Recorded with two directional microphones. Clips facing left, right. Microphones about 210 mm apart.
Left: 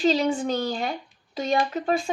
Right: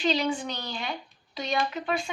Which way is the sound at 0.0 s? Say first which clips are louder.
Left 5 dB; 40° left (ahead or behind).